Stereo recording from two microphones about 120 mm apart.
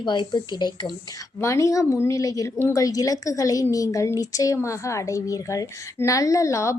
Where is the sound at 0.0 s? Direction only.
35° left (ahead or behind).